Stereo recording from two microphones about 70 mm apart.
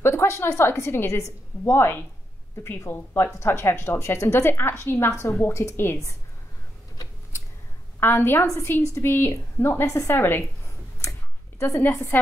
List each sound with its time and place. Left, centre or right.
0.0 s a woman's voice: left
8.0 s a woman's voice: left
11.8 s a woman's voice: left